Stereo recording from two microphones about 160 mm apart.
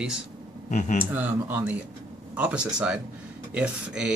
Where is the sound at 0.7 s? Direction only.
50° left (ahead or behind).